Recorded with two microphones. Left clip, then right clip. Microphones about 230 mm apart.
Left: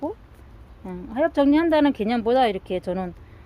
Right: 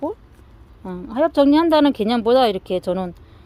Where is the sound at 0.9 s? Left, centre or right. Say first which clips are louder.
Right 4 dB; right.